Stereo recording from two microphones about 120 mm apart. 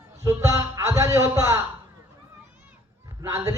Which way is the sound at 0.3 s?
25° right (ahead or behind).